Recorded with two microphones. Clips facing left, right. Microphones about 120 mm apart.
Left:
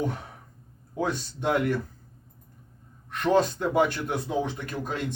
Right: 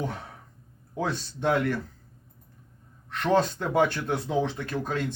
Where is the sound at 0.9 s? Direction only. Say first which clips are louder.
Left 1 dB; 15° left (ahead or behind).